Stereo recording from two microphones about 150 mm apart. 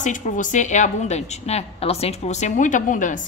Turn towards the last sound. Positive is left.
turn(degrees=60)  # may be behind; listen again after turning